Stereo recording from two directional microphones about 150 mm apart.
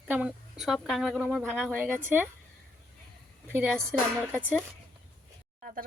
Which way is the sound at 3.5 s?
10° right (ahead or behind).